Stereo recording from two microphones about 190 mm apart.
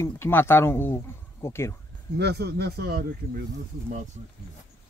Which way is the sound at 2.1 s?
60° right (ahead or behind).